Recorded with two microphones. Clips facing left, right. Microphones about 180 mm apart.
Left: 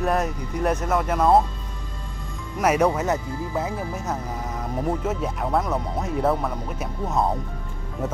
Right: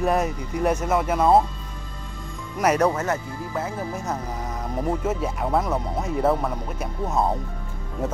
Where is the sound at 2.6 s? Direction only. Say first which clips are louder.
Even; 5° left (ahead or behind).